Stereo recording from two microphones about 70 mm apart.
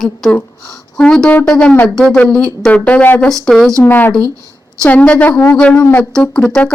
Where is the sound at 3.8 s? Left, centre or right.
Left.